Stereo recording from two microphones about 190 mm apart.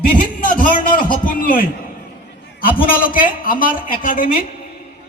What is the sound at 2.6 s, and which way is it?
A man's voice, 50° left (ahead or behind).